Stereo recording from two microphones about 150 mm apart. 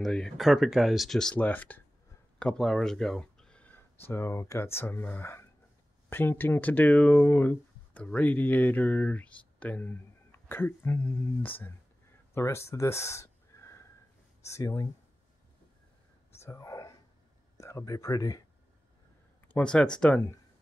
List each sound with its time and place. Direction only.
0.0 s speech: centre (ahead or behind); by 14.9 s 20° left (ahead or behind)
16.3 s whispering: 20° left (ahead or behind)
17.6 s speech: 20° left (ahead or behind)
19.4 s speech: 10° left (ahead or behind)